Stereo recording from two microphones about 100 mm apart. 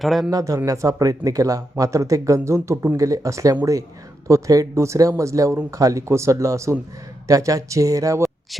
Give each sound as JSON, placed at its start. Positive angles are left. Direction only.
{"t": 0.0, "sound": "speech", "side_deg": 0}
{"t": 0.3, "sound": "speech", "side_deg": -35}